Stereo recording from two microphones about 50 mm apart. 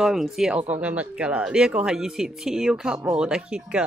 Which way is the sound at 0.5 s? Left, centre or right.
Right.